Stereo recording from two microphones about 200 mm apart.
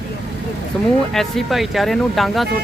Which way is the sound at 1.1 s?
Centre (ahead or behind).